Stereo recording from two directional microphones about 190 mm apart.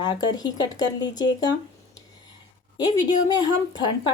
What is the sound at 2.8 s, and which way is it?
Speech, 20° left (ahead or behind).